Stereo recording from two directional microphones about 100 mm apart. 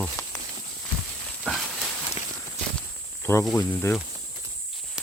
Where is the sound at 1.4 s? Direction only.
Centre (ahead or behind).